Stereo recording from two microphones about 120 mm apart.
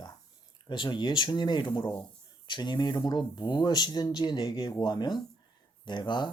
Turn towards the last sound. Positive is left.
turn(degrees=40)  # may be behind; listen again after turning